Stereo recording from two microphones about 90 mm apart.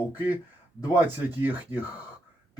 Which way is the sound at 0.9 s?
25° right (ahead or behind).